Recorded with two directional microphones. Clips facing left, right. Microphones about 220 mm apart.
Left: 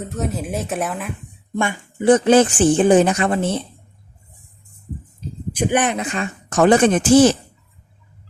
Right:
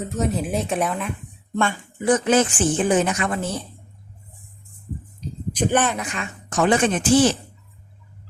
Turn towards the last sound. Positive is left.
turn(degrees=45)  # may be behind; listen again after turning